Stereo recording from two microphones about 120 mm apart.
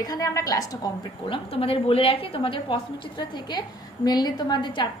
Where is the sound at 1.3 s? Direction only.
50° left (ahead or behind).